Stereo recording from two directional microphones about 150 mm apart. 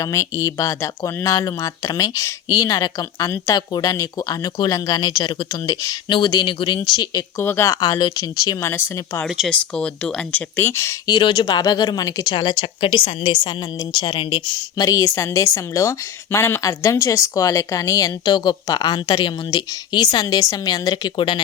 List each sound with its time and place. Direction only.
0.0 s speech: 20° left (ahead or behind)
8.6 s speech: 15° left (ahead or behind); by 14.4 s 35° left (ahead or behind)
14.8 s speech: 20° left (ahead or behind)